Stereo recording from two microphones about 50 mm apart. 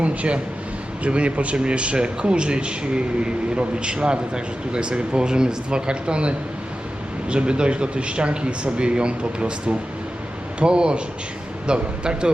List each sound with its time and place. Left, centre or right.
0.0 s speech: right